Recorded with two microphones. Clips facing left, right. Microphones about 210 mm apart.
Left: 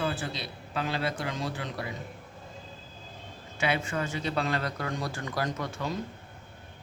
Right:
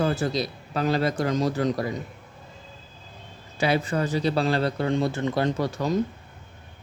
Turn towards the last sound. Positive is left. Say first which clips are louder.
# right 8 dB
turn(degrees=-40)  # may be behind; listen again after turning